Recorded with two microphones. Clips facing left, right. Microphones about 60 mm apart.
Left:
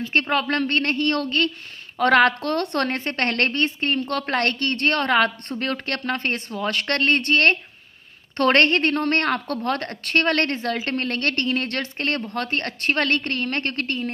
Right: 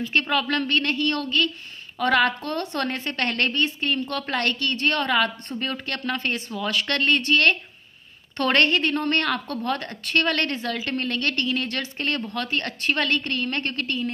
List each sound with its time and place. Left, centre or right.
0.0 s a woman's voice: left